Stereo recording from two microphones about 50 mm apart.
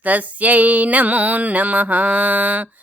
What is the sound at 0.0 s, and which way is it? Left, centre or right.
A woman's voice, right.